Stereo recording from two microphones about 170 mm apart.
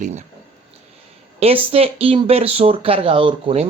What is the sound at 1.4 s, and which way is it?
Speech, 35° right (ahead or behind).